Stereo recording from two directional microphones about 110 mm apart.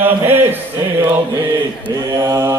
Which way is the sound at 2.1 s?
30° right (ahead or behind).